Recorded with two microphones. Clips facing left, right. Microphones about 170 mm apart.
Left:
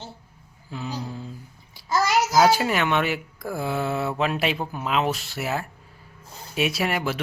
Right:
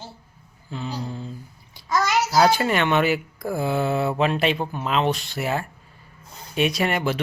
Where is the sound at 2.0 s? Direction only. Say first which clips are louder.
Even; 5° left (ahead or behind).